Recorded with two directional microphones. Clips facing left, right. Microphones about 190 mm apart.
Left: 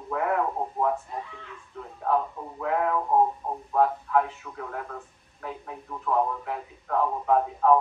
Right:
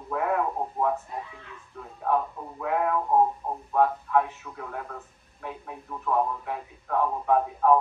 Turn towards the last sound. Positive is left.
turn(degrees=-5)  # may be behind; listen again after turning